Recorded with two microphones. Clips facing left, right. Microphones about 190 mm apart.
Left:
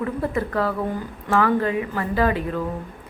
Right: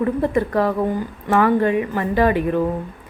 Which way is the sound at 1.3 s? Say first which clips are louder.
Right 4 dB; 20° right (ahead or behind).